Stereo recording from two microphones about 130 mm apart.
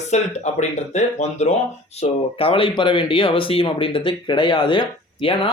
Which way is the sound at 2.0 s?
45° left (ahead or behind).